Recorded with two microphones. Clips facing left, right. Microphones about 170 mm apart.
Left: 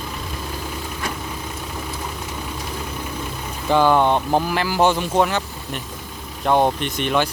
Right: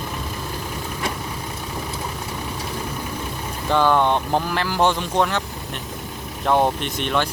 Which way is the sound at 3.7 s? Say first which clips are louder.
Left 2 dB; 10° left (ahead or behind).